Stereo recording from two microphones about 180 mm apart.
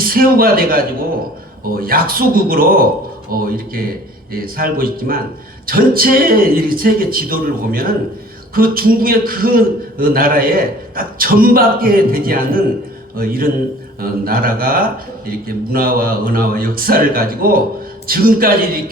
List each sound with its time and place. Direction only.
0.0 s a man's voice: 55° right (ahead or behind)